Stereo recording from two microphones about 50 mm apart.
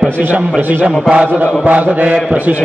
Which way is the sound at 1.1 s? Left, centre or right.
Right.